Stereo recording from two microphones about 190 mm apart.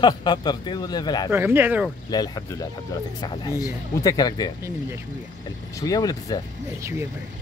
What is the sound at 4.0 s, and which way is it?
Speech, 20° left (ahead or behind).